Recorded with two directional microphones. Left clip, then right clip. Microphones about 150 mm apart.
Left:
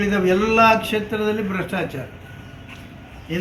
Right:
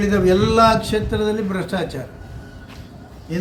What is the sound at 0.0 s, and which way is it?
Speech, 20° right (ahead or behind).